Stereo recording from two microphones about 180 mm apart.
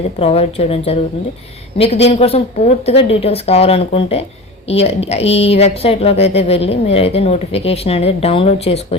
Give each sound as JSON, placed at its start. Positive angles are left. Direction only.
{"t": 0.2, "sound": "speech", "side_deg": 35}